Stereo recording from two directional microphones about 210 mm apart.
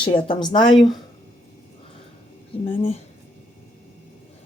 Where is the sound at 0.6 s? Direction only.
Centre (ahead or behind).